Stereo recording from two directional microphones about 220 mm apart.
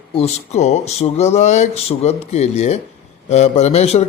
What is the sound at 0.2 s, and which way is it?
A man's voice, 30° left (ahead or behind).